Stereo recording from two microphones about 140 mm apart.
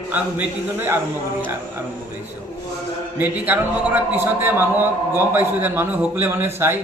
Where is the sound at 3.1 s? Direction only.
10° right (ahead or behind).